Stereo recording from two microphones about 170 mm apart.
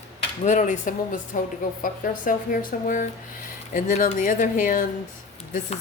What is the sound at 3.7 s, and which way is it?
A woman's voice, 50° left (ahead or behind).